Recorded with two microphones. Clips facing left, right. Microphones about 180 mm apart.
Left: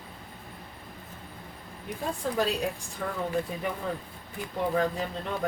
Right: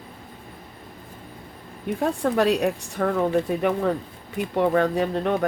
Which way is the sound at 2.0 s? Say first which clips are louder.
Right 7 dB; 70° right (ahead or behind).